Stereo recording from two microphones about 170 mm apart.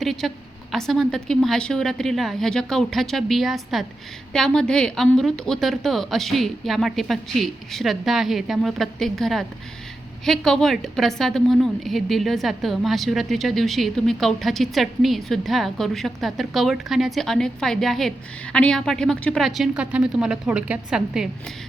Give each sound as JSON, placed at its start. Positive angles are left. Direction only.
{"t": 0.0, "sound": "a woman's voice", "side_deg": 0}